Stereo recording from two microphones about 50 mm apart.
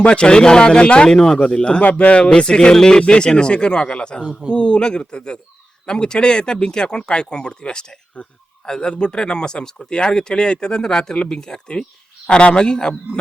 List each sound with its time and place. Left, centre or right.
0.0 s speech: centre